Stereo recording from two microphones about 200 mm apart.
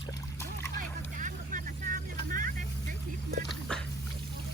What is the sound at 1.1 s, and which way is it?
Vehicle, 40° right (ahead or behind).